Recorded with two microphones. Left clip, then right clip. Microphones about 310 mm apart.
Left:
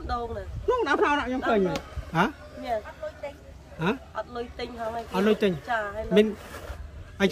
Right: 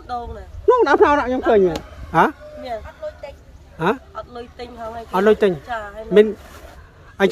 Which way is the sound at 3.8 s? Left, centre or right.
Centre.